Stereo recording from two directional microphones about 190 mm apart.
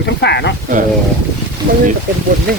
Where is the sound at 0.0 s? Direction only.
65° left (ahead or behind).